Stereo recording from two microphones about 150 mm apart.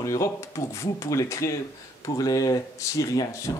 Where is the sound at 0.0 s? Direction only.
20° left (ahead or behind).